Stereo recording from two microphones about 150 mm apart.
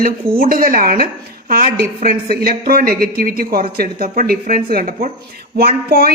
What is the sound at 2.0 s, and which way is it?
Speech, 85° right.